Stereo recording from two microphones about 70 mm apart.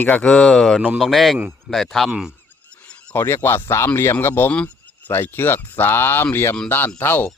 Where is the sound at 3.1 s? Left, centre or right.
Left.